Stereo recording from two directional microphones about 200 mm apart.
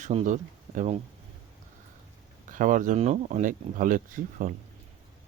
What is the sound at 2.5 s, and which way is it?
Speech, 40° right (ahead or behind).